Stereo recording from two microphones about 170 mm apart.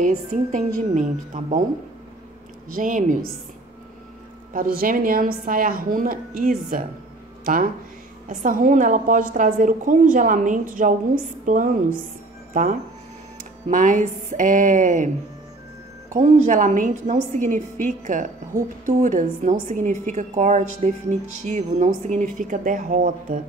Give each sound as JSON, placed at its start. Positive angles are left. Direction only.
{"t": 0.0, "sound": "a woman's voice", "side_deg": -45}
{"t": 2.7, "sound": "a woman's voice", "side_deg": -50}
{"t": 4.5, "sound": "a woman's voice", "side_deg": -55}
{"t": 13.7, "sound": "a woman's voice", "side_deg": -50}
{"t": 16.1, "sound": "a woman's voice", "side_deg": -50}